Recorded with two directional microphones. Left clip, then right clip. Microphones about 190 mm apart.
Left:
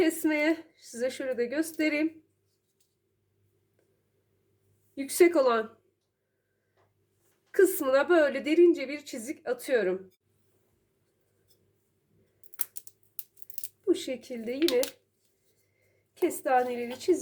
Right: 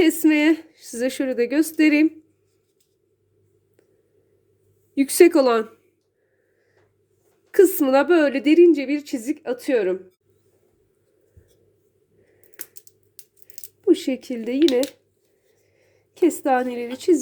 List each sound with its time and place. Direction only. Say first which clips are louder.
0.0 s a woman's voice: right 9 dB; 40° right (ahead or behind)
4.9 s a woman's voice: right 8 dB; 45° right (ahead or behind)
7.5 s a woman's voice: right 8 dB; 40° right (ahead or behind)
13.8 s a woman's voice: right 9 dB; 35° right (ahead or behind)
16.1 s a woman's voice: right 7 dB; 45° right (ahead or behind)